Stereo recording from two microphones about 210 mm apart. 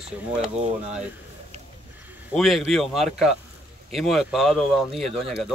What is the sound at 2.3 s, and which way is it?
Speech, centre (ahead or behind).